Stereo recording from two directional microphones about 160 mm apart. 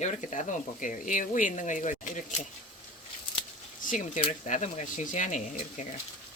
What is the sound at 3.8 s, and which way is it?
Speech, 55° left (ahead or behind).